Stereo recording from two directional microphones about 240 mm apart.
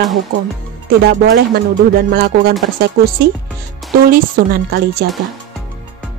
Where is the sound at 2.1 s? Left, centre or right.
Right.